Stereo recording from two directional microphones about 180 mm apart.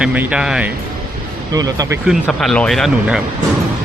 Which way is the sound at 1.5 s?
20° right (ahead or behind).